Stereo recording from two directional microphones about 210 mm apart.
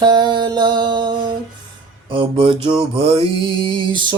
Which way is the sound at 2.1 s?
25° right (ahead or behind).